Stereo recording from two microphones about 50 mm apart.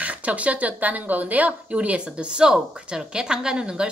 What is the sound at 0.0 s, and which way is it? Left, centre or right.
A woman's voice, right.